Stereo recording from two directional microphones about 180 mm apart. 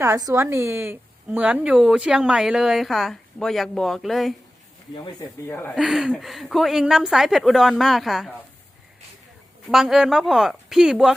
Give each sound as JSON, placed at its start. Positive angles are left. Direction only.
{"t": 0.0, "sound": "a woman's voice", "side_deg": -15}
{"t": 4.9, "sound": "speech", "side_deg": 20}
{"t": 5.7, "sound": "a woman's voice", "side_deg": 0}
{"t": 9.6, "sound": "a woman's voice", "side_deg": 0}